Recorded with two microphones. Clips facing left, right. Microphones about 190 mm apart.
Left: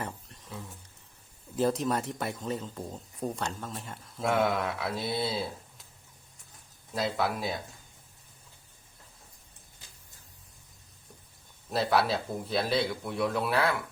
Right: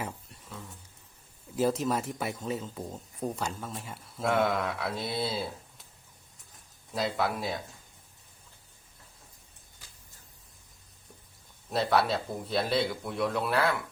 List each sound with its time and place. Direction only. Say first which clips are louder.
1.5 s a man's voice: even; 5° right (ahead or behind)
6.9 s a man's voice: even; centre (ahead or behind)
11.7 s a man's voice: even; centre (ahead or behind)